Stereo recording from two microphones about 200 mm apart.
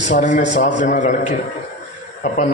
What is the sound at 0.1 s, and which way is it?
A man's voice, 40° left (ahead or behind).